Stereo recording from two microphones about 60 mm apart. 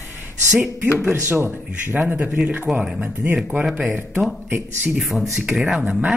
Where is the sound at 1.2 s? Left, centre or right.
Right.